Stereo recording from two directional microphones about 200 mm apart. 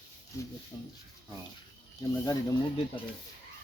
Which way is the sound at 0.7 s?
15° left (ahead or behind).